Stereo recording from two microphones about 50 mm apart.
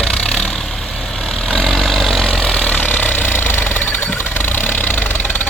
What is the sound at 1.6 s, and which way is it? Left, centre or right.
Vehicle, centre.